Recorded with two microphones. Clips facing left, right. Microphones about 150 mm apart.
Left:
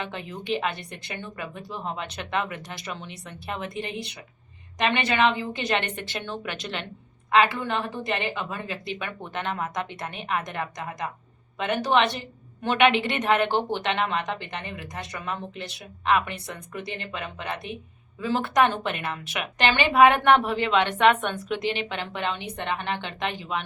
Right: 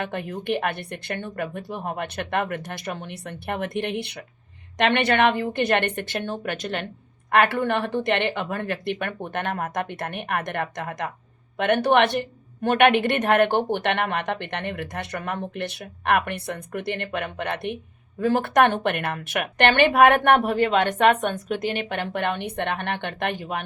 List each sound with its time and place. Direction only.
0.0 s a woman's voice: 55° right (ahead or behind)
7.3 s a woman's voice: 60° right (ahead or behind)